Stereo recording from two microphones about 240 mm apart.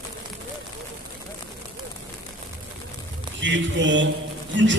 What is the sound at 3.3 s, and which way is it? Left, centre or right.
Speech, right.